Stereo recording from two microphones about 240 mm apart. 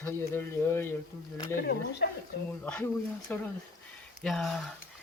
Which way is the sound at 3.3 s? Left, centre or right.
Centre.